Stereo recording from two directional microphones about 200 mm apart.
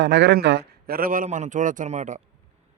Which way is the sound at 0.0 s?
60° right (ahead or behind).